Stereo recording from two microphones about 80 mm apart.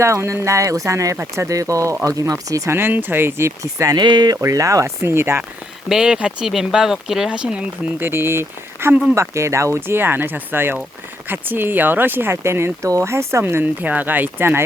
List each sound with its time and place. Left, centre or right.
0.0 s speech: right
2.7 s speech: right
3.9 s speech: right
4.4 s speech: right
5.9 s speech: centre
7.9 s speech: right